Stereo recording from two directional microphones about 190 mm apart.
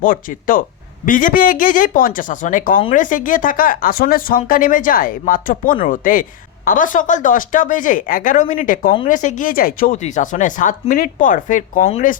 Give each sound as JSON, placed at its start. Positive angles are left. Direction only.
{"t": 0.0, "sound": "speech", "side_deg": 45}